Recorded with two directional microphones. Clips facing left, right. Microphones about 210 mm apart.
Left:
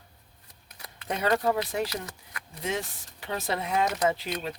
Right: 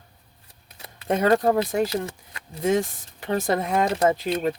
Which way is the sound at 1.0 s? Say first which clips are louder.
Right 6 dB; 50° right (ahead or behind).